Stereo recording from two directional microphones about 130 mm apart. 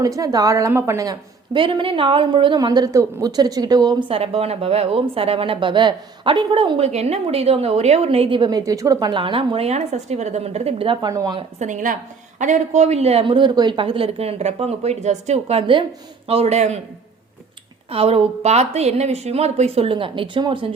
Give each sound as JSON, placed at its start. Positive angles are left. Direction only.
{"t": 0.2, "sound": "a woman's voice", "side_deg": -25}
{"t": 4.1, "sound": "a woman's voice", "side_deg": -50}
{"t": 6.8, "sound": "a woman's voice", "side_deg": -55}
{"t": 11.1, "sound": "speech", "side_deg": -25}
{"t": 11.6, "sound": "a woman's voice", "side_deg": -75}
{"t": 17.9, "sound": "a woman's voice", "side_deg": -50}